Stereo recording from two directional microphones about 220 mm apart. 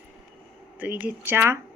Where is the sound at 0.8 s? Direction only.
5° right (ahead or behind).